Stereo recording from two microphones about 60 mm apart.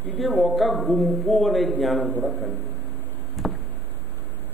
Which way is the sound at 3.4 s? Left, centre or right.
Centre.